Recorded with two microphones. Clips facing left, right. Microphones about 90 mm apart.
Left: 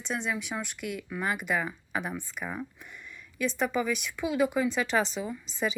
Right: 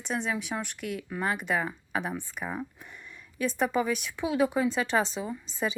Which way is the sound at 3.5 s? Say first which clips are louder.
Right 2 dB; 40° right (ahead or behind).